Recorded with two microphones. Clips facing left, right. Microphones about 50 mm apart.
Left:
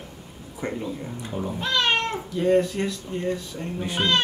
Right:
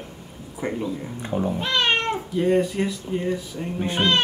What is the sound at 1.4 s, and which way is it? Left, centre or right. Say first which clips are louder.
Speech: right 1 dB; right.